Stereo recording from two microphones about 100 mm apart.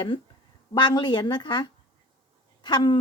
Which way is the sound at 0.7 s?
50° left (ahead or behind).